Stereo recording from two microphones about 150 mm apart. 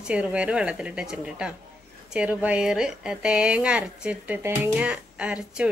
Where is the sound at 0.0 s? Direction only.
10° right (ahead or behind).